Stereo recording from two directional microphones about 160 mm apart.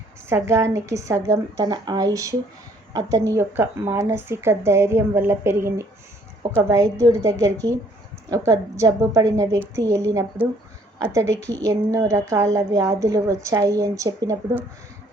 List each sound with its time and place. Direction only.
0.3 s a woman's voice: 15° right (ahead or behind)